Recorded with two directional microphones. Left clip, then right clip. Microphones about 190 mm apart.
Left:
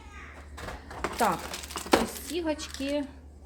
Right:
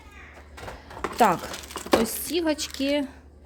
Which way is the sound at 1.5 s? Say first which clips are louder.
Right 2 dB; 20° right (ahead or behind).